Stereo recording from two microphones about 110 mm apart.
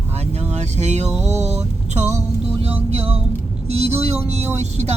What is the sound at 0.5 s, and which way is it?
Vehicle, 90° right.